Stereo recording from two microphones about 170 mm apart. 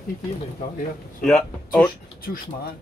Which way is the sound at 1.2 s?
5° left (ahead or behind).